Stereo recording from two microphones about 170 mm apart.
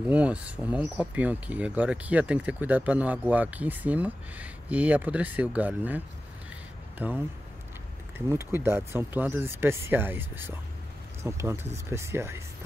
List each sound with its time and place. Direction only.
0.1 s speech: 5° right (ahead or behind)
8.3 s speech: 15° right (ahead or behind)